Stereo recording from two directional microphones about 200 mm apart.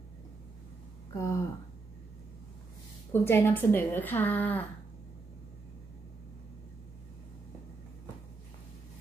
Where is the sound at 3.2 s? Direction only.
10° left (ahead or behind).